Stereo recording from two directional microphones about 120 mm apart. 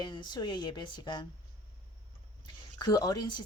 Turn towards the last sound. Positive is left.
turn(degrees=35)  # may be behind; listen again after turning